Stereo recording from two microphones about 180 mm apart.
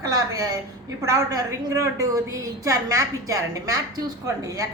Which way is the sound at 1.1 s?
20° right (ahead or behind).